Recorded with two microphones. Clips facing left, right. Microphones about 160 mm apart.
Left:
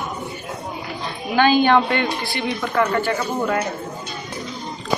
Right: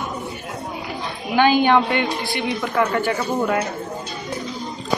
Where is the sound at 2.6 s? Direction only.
Centre (ahead or behind).